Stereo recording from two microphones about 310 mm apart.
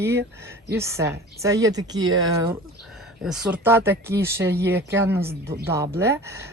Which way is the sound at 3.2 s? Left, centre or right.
Centre.